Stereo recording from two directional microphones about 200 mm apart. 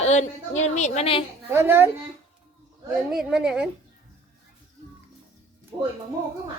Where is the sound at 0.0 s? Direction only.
35° left (ahead or behind).